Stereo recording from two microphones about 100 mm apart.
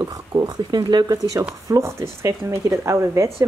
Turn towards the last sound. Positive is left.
turn(degrees=-30)  # may be behind; listen again after turning